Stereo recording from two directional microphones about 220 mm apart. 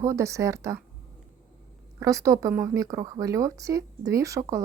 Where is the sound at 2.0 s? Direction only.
15° right (ahead or behind).